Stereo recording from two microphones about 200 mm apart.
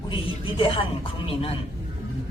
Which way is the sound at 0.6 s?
25° left (ahead or behind).